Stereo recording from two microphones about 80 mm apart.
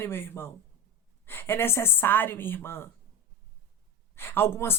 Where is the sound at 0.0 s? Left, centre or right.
Left.